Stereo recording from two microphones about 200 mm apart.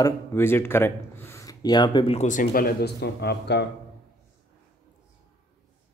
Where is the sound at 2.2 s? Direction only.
45° left (ahead or behind).